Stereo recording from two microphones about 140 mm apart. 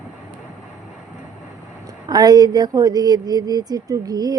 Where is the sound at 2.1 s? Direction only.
30° right (ahead or behind).